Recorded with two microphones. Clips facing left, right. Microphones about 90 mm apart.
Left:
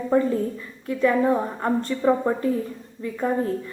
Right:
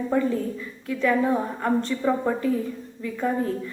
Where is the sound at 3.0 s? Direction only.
35° left (ahead or behind).